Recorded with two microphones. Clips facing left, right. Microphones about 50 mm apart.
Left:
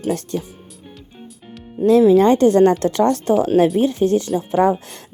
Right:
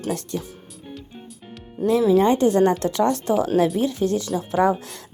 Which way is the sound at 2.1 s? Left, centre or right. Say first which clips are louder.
Left 5 dB; left.